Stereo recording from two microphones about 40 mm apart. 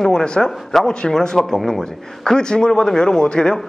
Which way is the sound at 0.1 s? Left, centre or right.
Centre.